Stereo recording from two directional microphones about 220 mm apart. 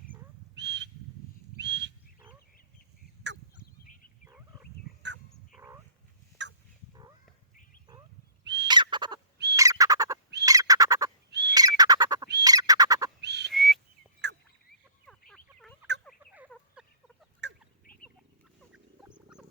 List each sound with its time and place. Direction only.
0.5 s whistle: 55° right (ahead or behind)
5.5 s dog: 15° right (ahead or behind)
6.4 s fowl: 55° right (ahead or behind)
7.5 s a sound: 40° left (ahead or behind)
8.6 s fowl: 20° right (ahead or behind)
9.6 s bird: 15° right (ahead or behind)
11.3 s bird: 50° right (ahead or behind)
11.5 s bird: 15° right (ahead or behind)
13.2 s whistling: 50° right (ahead or behind)
13.5 s whistling: centre (ahead or behind)
14.2 s fowl: 50° right (ahead or behind)
16.0 s turkey: 5° right (ahead or behind)
16.5 s a sound: centre (ahead or behind)